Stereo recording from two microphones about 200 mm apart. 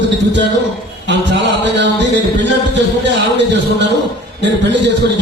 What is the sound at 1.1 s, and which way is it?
A man's voice, 60° right (ahead or behind).